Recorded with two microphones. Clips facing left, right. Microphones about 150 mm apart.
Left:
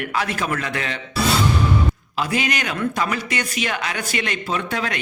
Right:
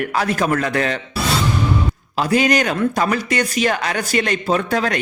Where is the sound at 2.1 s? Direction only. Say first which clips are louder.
Right 8 dB; 40° right (ahead or behind).